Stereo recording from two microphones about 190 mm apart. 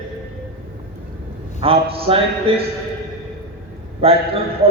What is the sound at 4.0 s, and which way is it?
Speech, 30° right (ahead or behind).